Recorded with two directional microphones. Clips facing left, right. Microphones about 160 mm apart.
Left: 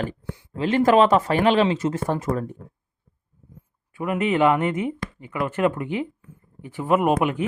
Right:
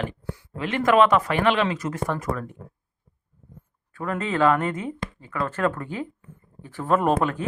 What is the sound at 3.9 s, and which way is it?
Speech, 15° left (ahead or behind).